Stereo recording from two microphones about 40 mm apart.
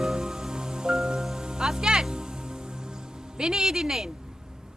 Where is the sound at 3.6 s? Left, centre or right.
Centre.